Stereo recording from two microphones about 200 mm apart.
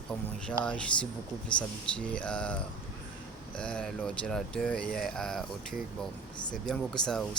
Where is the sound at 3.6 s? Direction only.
5° left (ahead or behind).